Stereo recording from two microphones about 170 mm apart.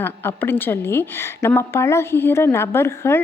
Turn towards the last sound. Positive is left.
turn(degrees=15)  # may be behind; listen again after turning